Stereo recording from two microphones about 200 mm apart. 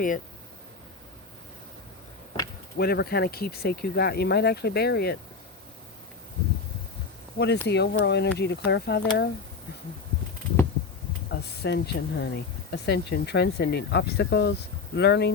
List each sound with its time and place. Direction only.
2.7 s speech: 50° left (ahead or behind)
7.3 s speech: 55° left (ahead or behind)
11.3 s speech: 60° left (ahead or behind)